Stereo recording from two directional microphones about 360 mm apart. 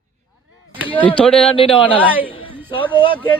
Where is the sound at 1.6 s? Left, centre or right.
Centre.